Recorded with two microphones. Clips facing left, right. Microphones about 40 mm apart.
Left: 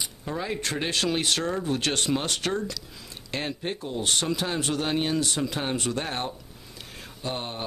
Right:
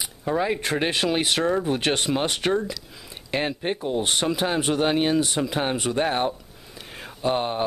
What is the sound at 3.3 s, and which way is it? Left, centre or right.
Speech, right.